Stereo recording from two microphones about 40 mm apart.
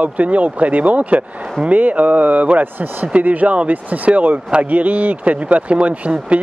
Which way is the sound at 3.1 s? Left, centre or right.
Right.